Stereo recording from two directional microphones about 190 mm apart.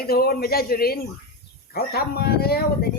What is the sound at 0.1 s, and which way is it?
A man's voice, 55° left (ahead or behind).